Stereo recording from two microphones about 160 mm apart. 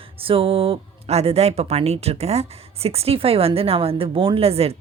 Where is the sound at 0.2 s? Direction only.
35° right (ahead or behind).